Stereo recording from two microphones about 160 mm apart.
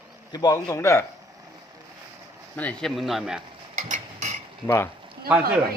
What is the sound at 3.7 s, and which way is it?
Mechanisms, 45° right (ahead or behind).